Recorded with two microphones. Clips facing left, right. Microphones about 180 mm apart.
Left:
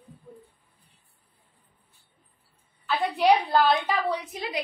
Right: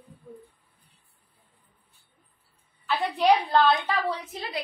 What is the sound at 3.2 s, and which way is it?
A woman's voice, 10° left (ahead or behind).